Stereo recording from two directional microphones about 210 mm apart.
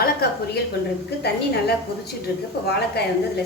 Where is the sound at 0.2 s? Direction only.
50° left (ahead or behind).